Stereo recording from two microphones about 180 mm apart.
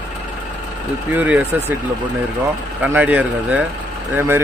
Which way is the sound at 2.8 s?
10° right (ahead or behind).